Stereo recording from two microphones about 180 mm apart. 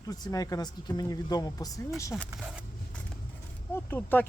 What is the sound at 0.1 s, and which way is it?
Speech, 20° left (ahead or behind).